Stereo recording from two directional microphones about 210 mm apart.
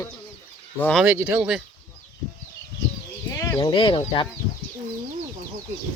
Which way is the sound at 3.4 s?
15° left (ahead or behind).